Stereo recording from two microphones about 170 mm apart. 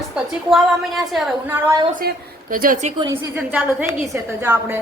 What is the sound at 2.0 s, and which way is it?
Speech, 55° right (ahead or behind).